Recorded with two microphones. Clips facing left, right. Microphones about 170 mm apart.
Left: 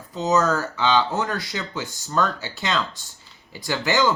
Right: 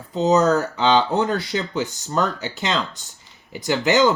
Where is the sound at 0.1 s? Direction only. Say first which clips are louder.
Right 4 dB; 25° right (ahead or behind).